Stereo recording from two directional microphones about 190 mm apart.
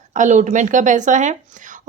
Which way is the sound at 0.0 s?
40° right (ahead or behind).